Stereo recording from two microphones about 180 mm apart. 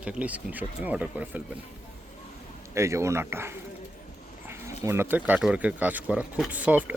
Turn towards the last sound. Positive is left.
turn(degrees=-10)  # may be behind; listen again after turning